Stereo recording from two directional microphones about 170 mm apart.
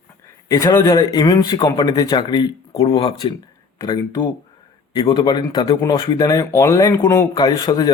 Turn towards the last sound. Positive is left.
turn(degrees=25)  # may be behind; listen again after turning